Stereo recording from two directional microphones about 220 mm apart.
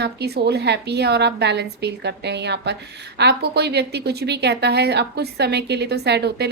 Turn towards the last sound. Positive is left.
turn(degrees=-50)  # may be behind; listen again after turning